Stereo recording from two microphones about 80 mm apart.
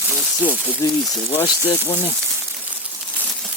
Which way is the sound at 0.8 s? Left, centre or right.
Left.